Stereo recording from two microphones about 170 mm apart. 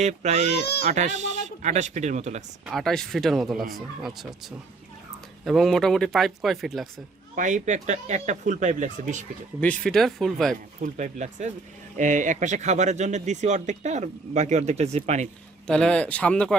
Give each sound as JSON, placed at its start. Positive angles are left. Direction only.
{"t": 0.0, "sound": "speech", "side_deg": -40}
{"t": 0.6, "sound": "speech", "side_deg": 70}
{"t": 0.9, "sound": "speech", "side_deg": -45}
{"t": 2.6, "sound": "speech", "side_deg": 0}
{"t": 7.3, "sound": "speech", "side_deg": -50}
{"t": 9.6, "sound": "speech", "side_deg": 10}
{"t": 10.8, "sound": "speech", "side_deg": -45}
{"t": 15.6, "sound": "speech", "side_deg": 5}